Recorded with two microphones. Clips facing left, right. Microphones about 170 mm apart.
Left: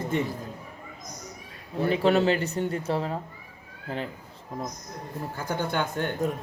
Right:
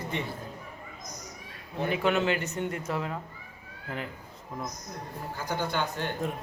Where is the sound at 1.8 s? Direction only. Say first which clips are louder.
Left 5 dB; 35° left (ahead or behind).